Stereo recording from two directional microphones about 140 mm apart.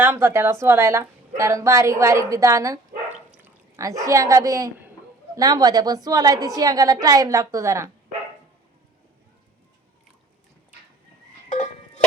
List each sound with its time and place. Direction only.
0.0 s a woman's voice: 15° right (ahead or behind)
11.4 s cowbell: 65° left (ahead or behind)